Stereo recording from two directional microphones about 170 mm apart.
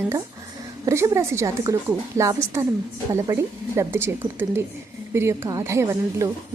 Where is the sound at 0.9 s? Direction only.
15° right (ahead or behind).